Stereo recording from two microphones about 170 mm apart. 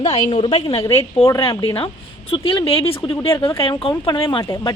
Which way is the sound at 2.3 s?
30° left (ahead or behind).